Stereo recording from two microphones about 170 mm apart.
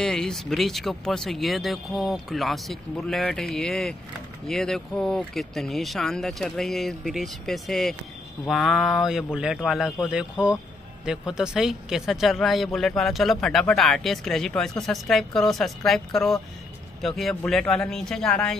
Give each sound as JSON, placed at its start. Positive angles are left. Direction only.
{"t": 0.0, "sound": "a man's voice", "side_deg": 5}